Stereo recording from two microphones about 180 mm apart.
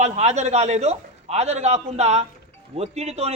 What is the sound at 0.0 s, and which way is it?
A man's voice, 35° right (ahead or behind).